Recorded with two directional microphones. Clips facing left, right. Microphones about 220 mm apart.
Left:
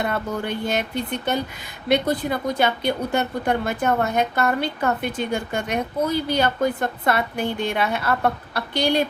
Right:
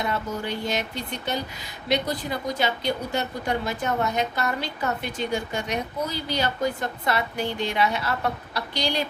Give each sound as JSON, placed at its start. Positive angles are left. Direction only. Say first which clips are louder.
{"t": 0.0, "sound": "a woman's voice", "louder": "left 3 dB", "side_deg": 55}